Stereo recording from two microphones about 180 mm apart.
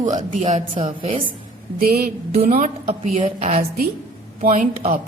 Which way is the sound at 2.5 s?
40° right (ahead or behind).